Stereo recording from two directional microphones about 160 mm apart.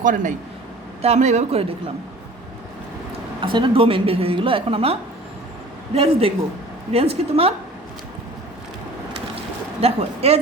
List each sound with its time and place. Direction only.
0.0 s speech: 55° right (ahead or behind)
3.4 s speech: 30° right (ahead or behind)
9.8 s speech: 40° right (ahead or behind)